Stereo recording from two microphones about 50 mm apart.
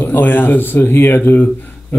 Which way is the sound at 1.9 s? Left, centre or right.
Left.